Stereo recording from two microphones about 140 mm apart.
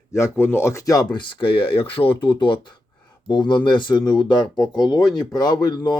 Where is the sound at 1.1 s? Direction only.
35° left (ahead or behind).